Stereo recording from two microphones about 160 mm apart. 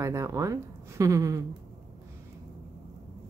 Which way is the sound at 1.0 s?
20° right (ahead or behind).